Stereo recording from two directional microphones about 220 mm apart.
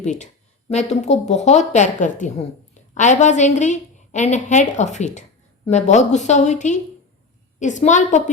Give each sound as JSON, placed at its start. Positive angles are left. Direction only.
{"t": 0.0, "sound": "a woman's voice", "side_deg": 30}